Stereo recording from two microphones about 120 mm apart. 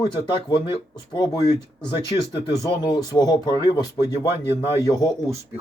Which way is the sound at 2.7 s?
35° left (ahead or behind).